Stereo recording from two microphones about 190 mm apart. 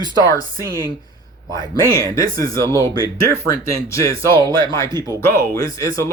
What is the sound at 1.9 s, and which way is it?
Speech, 15° left (ahead or behind).